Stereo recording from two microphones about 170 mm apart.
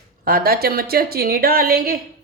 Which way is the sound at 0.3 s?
60° right (ahead or behind).